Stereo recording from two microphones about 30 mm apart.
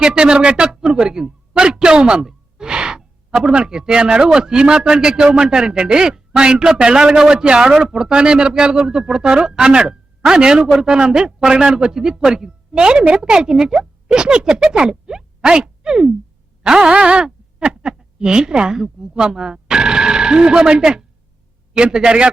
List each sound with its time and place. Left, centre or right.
0.2 s speech: right
2.6 s breathing: right
3.4 s a man's voice: right
7.6 s a man's voice: centre
7.9 s a man's voice: right
10.9 s a man's voice: right
16.9 s speech: right
17.7 s speech: right